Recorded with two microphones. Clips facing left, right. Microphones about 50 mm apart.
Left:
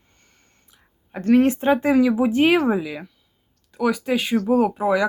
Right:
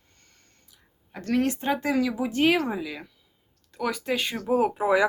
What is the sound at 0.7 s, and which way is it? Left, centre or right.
Speech, left.